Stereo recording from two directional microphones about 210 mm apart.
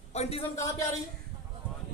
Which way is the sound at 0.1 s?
30° left (ahead or behind).